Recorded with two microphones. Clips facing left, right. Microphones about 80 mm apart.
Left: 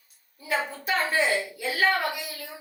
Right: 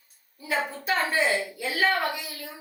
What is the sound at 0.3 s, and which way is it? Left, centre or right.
A woman's voice, centre.